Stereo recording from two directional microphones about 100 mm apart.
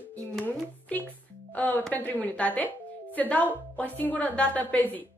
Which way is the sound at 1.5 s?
15° left (ahead or behind).